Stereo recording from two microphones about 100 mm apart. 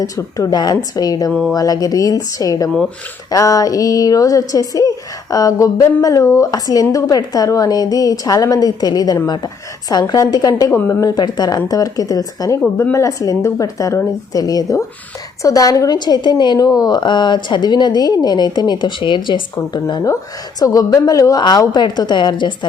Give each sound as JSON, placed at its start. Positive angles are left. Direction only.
{"t": 0.0, "sound": "a woman's voice", "side_deg": 35}
{"t": 10.7, "sound": "a woman's voice", "side_deg": 25}
{"t": 11.0, "sound": "a woman's voice", "side_deg": 40}
{"t": 20.6, "sound": "a woman's voice", "side_deg": 40}